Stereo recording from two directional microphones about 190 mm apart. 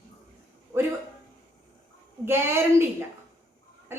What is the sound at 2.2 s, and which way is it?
Speech, 10° right (ahead or behind).